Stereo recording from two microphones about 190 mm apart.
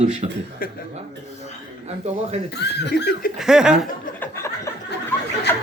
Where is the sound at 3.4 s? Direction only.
5° right (ahead or behind).